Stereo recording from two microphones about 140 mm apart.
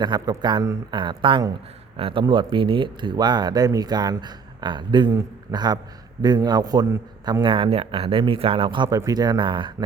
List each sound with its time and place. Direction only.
0.0 s a man's voice: 30° right (ahead or behind)
7.4 s a man's voice: 40° right (ahead or behind)